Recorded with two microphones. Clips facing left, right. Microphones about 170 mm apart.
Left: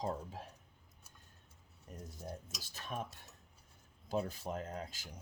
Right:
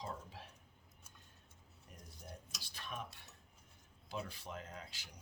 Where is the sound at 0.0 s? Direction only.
45° left (ahead or behind).